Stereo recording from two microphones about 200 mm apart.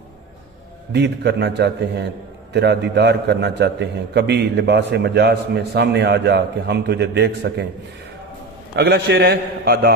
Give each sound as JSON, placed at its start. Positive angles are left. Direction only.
{"t": 0.9, "sound": "a man's voice", "side_deg": -60}
{"t": 8.7, "sound": "a man's voice", "side_deg": -55}